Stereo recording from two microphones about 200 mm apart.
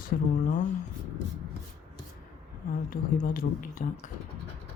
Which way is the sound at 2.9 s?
45° left (ahead or behind).